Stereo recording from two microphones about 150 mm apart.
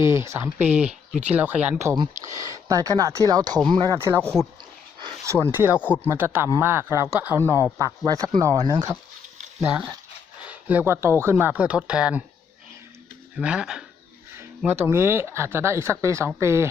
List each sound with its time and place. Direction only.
0.0 s speech: 20° right (ahead or behind)
3.9 s speech: 15° right (ahead or behind)
9.6 s speech: 10° right (ahead or behind)
13.3 s speech: 5° right (ahead or behind)
14.3 s a sound: 15° right (ahead or behind)
14.8 s speech: 15° right (ahead or behind)